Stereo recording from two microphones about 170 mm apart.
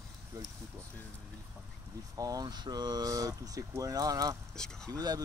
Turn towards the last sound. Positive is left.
turn(degrees=5)  # may be behind; listen again after turning